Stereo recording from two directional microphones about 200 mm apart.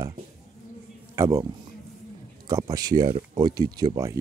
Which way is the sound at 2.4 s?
15° right (ahead or behind).